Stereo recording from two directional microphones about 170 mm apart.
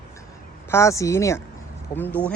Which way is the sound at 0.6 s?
15° left (ahead or behind).